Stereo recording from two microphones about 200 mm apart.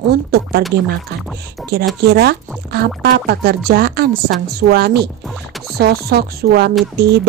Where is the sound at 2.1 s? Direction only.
55° right (ahead or behind).